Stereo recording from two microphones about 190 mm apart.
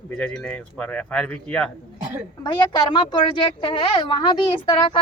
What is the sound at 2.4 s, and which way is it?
A woman's voice, 25° left (ahead or behind).